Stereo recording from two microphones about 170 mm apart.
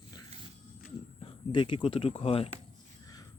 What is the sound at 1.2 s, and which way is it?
Speech, 30° left (ahead or behind).